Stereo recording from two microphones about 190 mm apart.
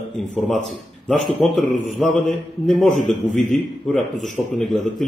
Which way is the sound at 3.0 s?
40° left (ahead or behind).